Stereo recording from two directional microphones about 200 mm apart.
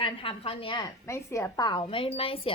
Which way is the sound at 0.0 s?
25° left (ahead or behind).